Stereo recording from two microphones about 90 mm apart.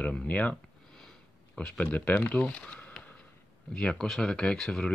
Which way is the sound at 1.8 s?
15° left (ahead or behind).